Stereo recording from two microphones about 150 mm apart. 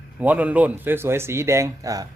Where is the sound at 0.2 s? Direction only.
10° right (ahead or behind).